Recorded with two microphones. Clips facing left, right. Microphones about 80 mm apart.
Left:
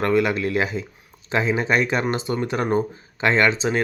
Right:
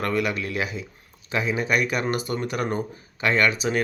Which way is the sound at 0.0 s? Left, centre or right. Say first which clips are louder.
Left 5 dB; left.